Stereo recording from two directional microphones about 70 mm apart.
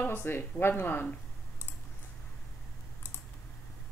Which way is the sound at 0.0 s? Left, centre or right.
Left.